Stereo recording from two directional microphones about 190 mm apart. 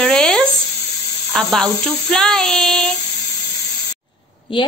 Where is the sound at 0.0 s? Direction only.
5° left (ahead or behind).